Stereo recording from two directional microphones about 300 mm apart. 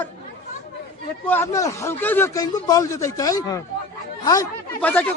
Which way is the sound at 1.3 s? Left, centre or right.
Centre.